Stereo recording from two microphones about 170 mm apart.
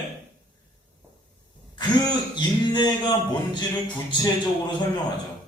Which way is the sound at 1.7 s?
25° left (ahead or behind).